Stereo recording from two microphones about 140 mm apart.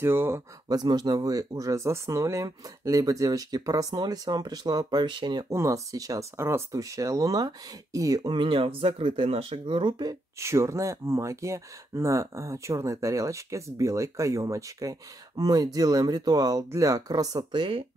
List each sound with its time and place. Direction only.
0.0 s speech: 15° right (ahead or behind)
0.7 s speech: 30° right (ahead or behind)
5.5 s speech: 20° right (ahead or behind)
10.4 s speech: 20° right (ahead or behind); by 17.8 s 35° right (ahead or behind)